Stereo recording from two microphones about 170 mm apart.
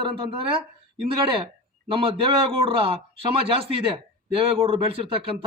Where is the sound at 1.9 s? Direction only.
30° right (ahead or behind).